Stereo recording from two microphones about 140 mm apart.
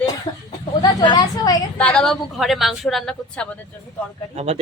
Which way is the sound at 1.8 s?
5° left (ahead or behind).